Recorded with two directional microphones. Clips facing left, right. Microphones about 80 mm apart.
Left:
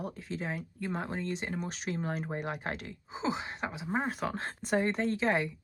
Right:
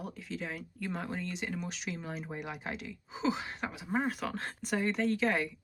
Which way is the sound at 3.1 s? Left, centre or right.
Left.